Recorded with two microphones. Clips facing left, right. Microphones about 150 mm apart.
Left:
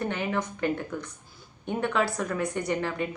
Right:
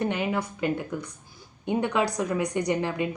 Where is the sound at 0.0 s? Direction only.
15° right (ahead or behind).